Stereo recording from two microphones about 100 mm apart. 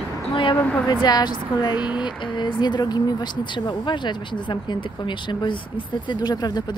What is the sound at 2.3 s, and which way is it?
Speech, 50° left (ahead or behind).